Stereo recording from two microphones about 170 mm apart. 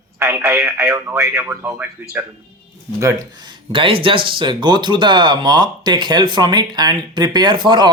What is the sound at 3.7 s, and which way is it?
Speech, 30° right (ahead or behind).